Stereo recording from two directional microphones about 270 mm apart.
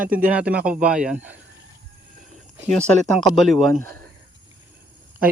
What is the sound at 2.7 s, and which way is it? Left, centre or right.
Speech, centre.